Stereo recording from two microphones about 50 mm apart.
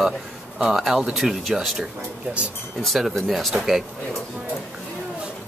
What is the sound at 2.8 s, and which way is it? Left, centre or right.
Speech, centre.